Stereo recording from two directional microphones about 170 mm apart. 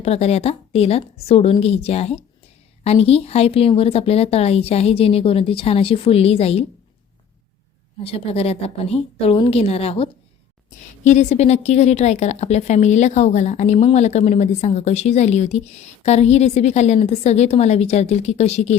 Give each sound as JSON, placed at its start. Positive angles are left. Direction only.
{"t": 0.0, "sound": "a woman's voice", "side_deg": 40}
{"t": 8.0, "sound": "a woman's voice", "side_deg": 35}